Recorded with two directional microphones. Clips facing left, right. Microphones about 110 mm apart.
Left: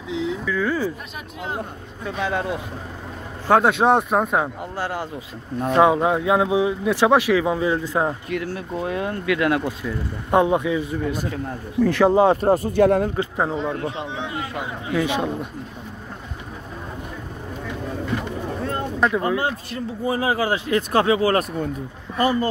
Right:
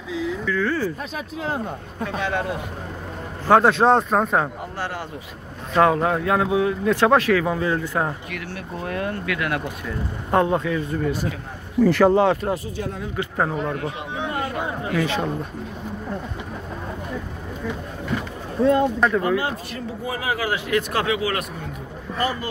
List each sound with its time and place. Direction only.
0.5 s speech: 10° left (ahead or behind)
2.2 s speech: 20° left (ahead or behind)
3.4 s speech: 5° left (ahead or behind)
4.7 s speech: 15° left (ahead or behind)
12.2 s speech: 25° left (ahead or behind)
12.4 s speech: 50° left (ahead or behind)
13.4 s speech: 20° left (ahead or behind)
14.9 s speech: 15° left (ahead or behind)
18.9 s speech: 5° left (ahead or behind)
19.2 s speech: 30° left (ahead or behind)